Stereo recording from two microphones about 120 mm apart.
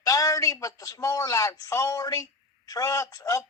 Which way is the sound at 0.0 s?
30° left (ahead or behind).